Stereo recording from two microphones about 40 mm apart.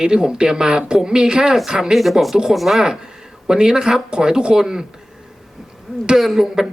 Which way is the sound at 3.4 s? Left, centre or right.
Centre.